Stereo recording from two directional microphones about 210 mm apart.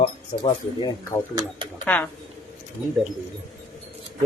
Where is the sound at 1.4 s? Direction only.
20° right (ahead or behind).